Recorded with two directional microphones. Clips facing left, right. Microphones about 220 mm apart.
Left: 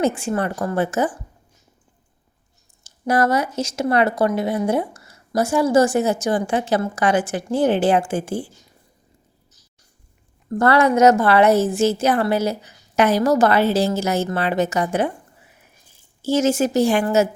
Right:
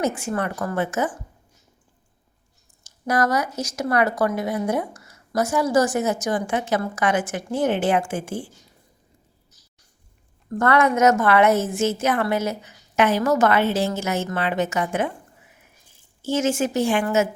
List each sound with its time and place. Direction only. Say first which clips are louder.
0.2 s a woman's voice: left 3 dB; 30° left (ahead or behind)
2.8 s speech: left 3 dB; 30° left (ahead or behind)
10.6 s a woman's voice: left 3 dB; 35° left (ahead or behind)
16.2 s a woman's voice: left 4 dB; 35° left (ahead or behind)